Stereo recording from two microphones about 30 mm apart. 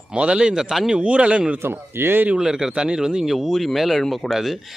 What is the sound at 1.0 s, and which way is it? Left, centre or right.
Speech, right.